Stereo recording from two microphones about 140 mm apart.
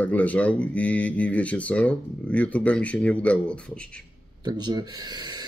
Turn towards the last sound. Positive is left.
turn(degrees=-30)  # may be behind; listen again after turning